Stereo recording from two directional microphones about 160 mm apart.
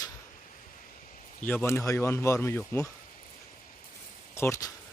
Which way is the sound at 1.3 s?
10° left (ahead or behind).